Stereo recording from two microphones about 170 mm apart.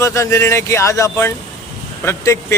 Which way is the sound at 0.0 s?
20° left (ahead or behind).